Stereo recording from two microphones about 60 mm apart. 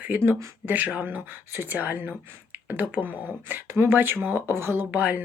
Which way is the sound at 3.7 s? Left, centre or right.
Right.